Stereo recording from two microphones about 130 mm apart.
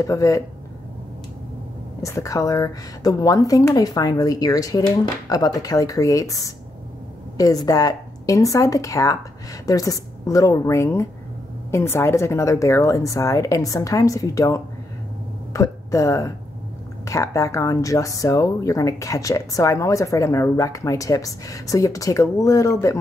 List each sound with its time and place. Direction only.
0.0 s speech: 25° left (ahead or behind)
2.0 s speech: 25° left (ahead or behind)